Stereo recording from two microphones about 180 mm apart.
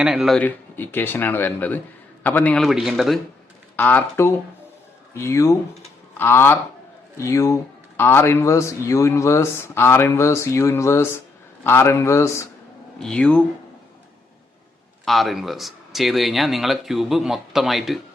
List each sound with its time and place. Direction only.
0.0 s speech: 5° right (ahead or behind)
3.8 s speech: 10° left (ahead or behind)
13.0 s speech: 5° left (ahead or behind)
15.0 s speech: centre (ahead or behind)